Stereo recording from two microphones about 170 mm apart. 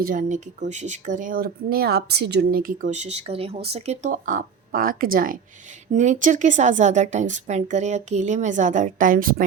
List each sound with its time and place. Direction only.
0.0 s speech: 55° right (ahead or behind)
5.9 s speech: 45° right (ahead or behind)